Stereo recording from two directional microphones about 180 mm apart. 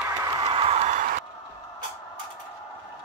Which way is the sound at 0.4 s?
35° right (ahead or behind).